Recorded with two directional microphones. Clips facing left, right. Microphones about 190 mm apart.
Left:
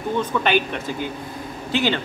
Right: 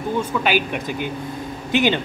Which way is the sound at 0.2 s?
10° right (ahead or behind).